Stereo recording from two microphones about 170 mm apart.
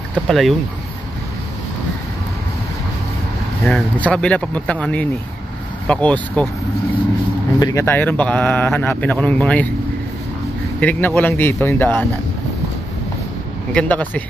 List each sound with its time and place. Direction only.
0.3 s speech: centre (ahead or behind)
3.6 s speech: 5° left (ahead or behind)
7.5 s speech: 25° left (ahead or behind)
7.8 s speech: 10° left (ahead or behind)
10.8 s speech: 10° left (ahead or behind)
13.7 s speech: 10° left (ahead or behind)